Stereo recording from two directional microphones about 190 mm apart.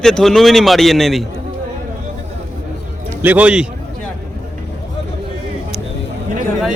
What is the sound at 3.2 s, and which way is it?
Speech, 10° right (ahead or behind).